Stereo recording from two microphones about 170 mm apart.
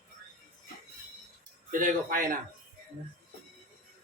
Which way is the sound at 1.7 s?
55° right (ahead or behind).